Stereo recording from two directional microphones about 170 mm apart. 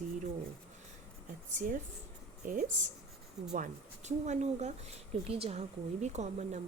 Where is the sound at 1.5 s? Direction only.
50° right (ahead or behind).